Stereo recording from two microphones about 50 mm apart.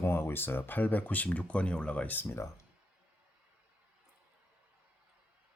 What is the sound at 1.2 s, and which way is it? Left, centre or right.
Speech, left.